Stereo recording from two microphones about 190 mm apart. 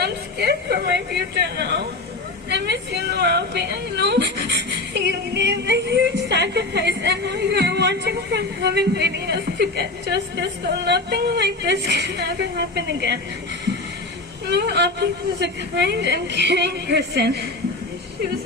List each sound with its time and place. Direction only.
0.0 s a woman's voice: 60° right (ahead or behind)
14.4 s speech: 65° right (ahead or behind)